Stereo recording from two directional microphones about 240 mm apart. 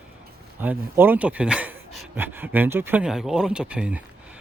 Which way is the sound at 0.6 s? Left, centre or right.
Centre.